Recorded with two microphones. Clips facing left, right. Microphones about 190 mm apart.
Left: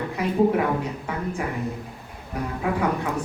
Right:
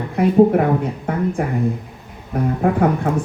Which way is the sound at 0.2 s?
50° right (ahead or behind).